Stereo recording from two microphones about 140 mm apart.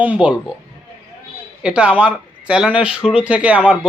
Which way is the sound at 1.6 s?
10° right (ahead or behind).